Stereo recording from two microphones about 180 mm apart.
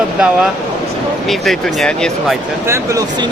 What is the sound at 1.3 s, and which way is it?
Speech, centre (ahead or behind).